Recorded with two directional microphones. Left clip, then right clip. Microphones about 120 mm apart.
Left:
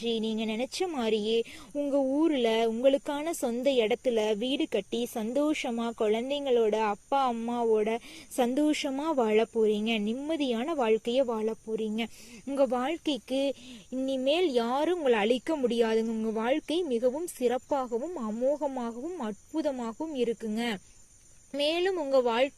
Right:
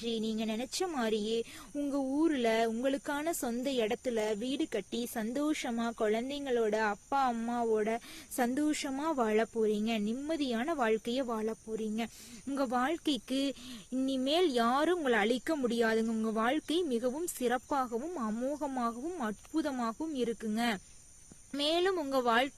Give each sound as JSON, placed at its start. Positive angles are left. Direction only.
{"t": 0.1, "sound": "speech", "side_deg": 15}
{"t": 1.7, "sound": "speech", "side_deg": 5}
{"t": 2.3, "sound": "speech", "side_deg": 15}
{"t": 4.1, "sound": "speech", "side_deg": 30}
{"t": 8.5, "sound": "speech", "side_deg": 30}
{"t": 9.0, "sound": "speech", "side_deg": 10}
{"t": 10.7, "sound": "speech", "side_deg": 5}